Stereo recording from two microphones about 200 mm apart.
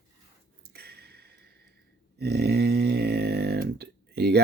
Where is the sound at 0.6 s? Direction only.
55° right (ahead or behind).